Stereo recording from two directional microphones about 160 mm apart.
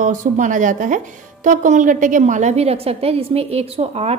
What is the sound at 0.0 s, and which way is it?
A woman's voice, 55° right (ahead or behind).